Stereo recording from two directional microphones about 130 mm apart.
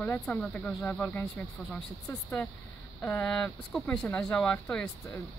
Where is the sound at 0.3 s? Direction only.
10° left (ahead or behind).